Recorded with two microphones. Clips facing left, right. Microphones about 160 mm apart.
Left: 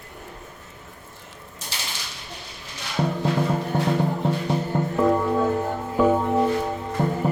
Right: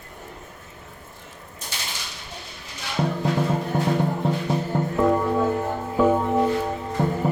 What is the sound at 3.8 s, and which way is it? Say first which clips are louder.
Music: even; centre (ahead or behind).